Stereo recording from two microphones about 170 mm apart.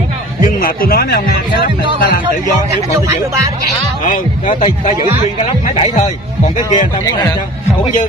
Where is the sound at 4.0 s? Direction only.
50° left (ahead or behind).